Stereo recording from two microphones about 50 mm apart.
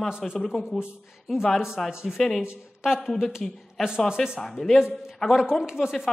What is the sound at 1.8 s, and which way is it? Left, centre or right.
Speech, centre.